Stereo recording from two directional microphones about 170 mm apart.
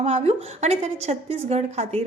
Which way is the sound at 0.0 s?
40° right (ahead or behind).